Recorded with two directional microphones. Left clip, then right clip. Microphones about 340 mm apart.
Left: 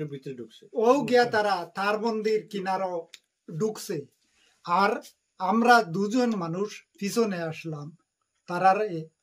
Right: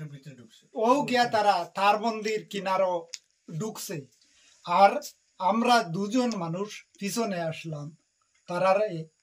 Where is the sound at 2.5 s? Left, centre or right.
Centre.